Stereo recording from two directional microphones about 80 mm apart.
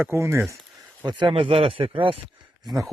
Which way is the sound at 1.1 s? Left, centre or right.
Right.